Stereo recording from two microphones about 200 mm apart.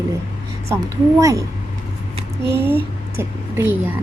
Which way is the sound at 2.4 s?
55° right (ahead or behind).